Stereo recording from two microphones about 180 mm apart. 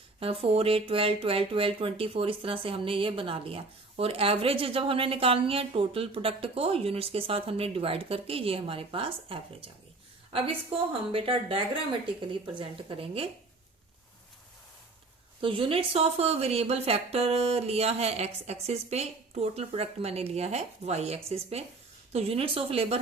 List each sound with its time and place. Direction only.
0.2 s a woman's voice: 30° right (ahead or behind)
15.4 s speech: 30° right (ahead or behind)